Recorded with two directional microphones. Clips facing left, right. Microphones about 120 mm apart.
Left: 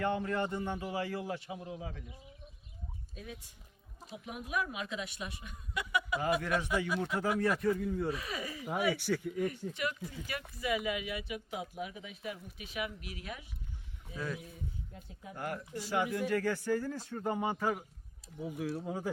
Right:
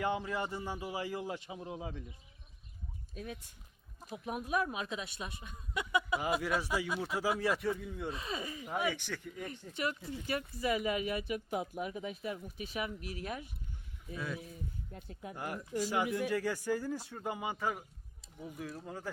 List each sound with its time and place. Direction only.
0.0 s a man's voice: 10° right (ahead or behind)
4.1 s speech: 40° right (ahead or behind); by 6.2 s 20° right (ahead or behind)
7.0 s speech: 5° right (ahead or behind)
8.1 s speech: 25° right (ahead or behind)
8.6 s speech: 10° left (ahead or behind)
9.5 s speech: 30° right (ahead or behind)
14.9 s speech: 60° right (ahead or behind)
15.4 s a man's voice: 15° right (ahead or behind); by 19.1 s 10° left (ahead or behind)